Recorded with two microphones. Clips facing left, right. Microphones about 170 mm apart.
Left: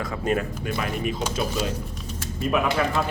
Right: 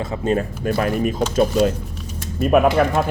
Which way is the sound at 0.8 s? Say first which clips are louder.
Right 8 dB; 45° right (ahead or behind).